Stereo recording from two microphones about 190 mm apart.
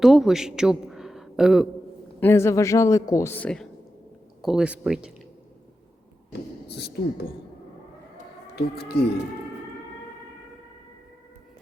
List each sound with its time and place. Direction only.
0.0 s a man's voice: centre (ahead or behind)
2.2 s a man's voice: 15° left (ahead or behind); by 5.1 s 5° right (ahead or behind)
6.7 s speech: 60° left (ahead or behind)
8.5 s speech: 55° left (ahead or behind)